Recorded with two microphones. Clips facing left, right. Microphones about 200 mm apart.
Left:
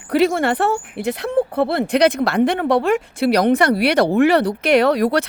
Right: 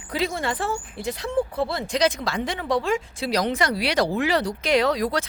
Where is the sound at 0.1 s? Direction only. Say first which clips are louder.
Left 10 dB; 65° left (ahead or behind).